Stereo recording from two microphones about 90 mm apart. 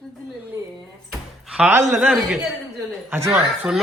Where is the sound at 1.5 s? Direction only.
10° right (ahead or behind).